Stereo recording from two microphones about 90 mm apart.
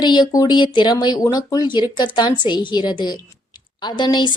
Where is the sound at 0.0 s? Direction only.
50° left (ahead or behind).